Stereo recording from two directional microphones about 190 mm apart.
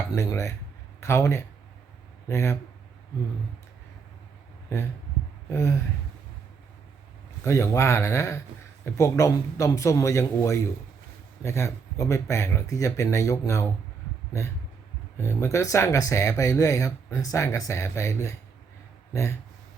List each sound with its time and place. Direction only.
0.1 s speech: 15° left (ahead or behind)
5.5 s gasp: 15° left (ahead or behind)
7.4 s speech: 15° left (ahead or behind)
15.2 s speech: 15° left (ahead or behind)